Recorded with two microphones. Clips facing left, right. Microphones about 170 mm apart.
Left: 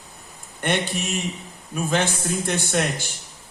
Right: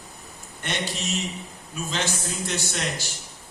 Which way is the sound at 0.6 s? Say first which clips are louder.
Left 6 dB; 55° left (ahead or behind).